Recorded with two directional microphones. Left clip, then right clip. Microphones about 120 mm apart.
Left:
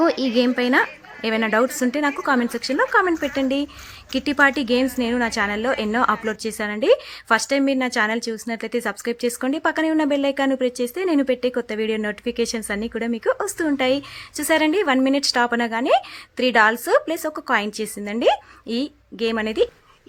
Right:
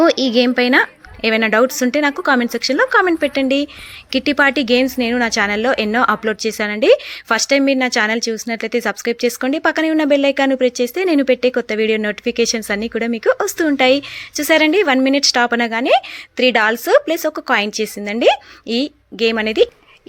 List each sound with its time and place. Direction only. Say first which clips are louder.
0.0 s a woman's voice: right 6 dB; 25° right (ahead or behind)